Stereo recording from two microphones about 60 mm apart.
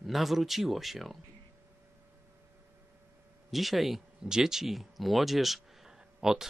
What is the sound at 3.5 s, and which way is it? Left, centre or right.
Speech, centre.